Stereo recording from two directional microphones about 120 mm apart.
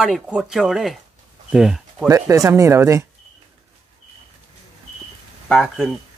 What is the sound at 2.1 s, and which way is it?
Speech, 25° right (ahead or behind).